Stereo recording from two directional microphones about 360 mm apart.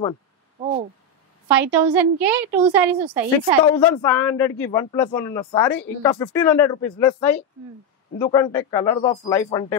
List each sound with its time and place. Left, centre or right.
0.6 s a sound: centre
1.5 s a woman's voice: centre
3.6 s a man's voice: centre